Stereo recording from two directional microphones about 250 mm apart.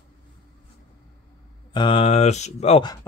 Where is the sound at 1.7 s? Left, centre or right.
Centre.